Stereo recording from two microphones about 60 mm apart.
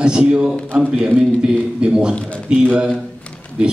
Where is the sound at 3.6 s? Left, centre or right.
Centre.